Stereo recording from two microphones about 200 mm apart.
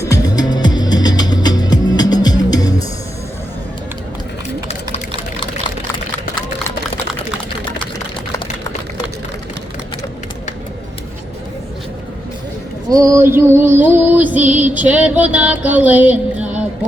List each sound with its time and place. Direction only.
0.0 s music: 15° left (ahead or behind)
12.9 s female singing: 15° right (ahead or behind)
14.6 s music: 5° right (ahead or behind)